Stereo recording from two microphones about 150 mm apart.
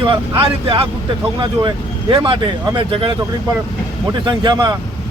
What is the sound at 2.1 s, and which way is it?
Speech, 30° right (ahead or behind).